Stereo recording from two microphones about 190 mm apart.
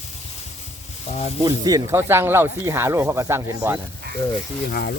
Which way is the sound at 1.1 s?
35° left (ahead or behind).